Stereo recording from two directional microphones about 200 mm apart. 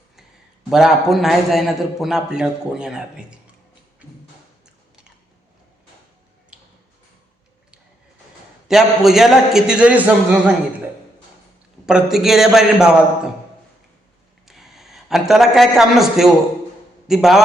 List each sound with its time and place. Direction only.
0.7 s a man's voice: centre (ahead or behind)
8.6 s a man's voice: centre (ahead or behind)
11.9 s a man's voice: 5° right (ahead or behind)
14.4 s a man's voice: centre (ahead or behind)